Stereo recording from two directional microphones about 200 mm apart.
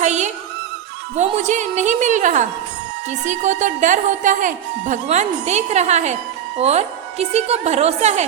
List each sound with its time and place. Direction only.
0.0 s music: 35° right (ahead or behind)
1.1 s speech: 35° right (ahead or behind)